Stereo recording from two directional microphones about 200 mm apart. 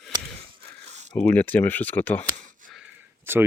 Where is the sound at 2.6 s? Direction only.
40° right (ahead or behind).